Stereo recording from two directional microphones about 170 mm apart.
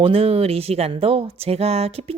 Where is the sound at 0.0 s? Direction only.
35° right (ahead or behind).